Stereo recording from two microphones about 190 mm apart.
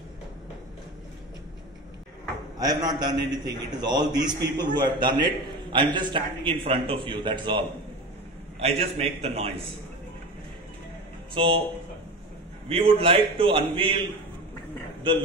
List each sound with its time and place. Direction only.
2.6 s a man's voice: 20° right (ahead or behind)
11.3 s a man's voice: 30° right (ahead or behind)
12.6 s a man's voice: 30° right (ahead or behind)